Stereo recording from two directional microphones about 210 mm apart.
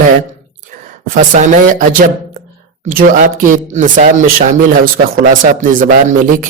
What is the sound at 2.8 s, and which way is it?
Speech, 40° right (ahead or behind).